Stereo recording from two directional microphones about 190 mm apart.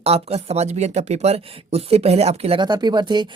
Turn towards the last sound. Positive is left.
turn(degrees=-25)  # may be behind; listen again after turning